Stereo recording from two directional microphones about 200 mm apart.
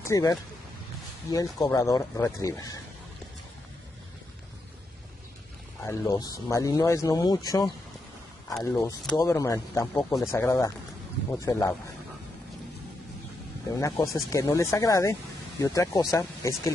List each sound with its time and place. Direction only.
0.0 s speech: 15° left (ahead or behind)
5.9 s speech: 15° left (ahead or behind)
13.7 s speech: 15° left (ahead or behind)